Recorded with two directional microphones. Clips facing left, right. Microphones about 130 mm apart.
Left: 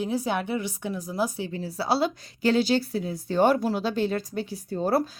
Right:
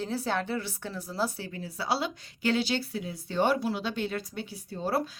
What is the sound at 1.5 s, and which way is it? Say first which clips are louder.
Speech: left 6 dB; 35° left (ahead or behind).